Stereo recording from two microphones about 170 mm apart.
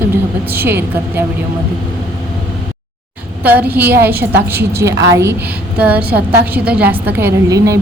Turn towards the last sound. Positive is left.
turn(degrees=-20)  # may be behind; listen again after turning